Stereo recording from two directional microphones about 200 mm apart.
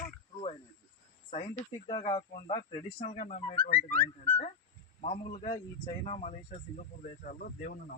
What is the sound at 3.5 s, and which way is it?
Speech, 25° left (ahead or behind).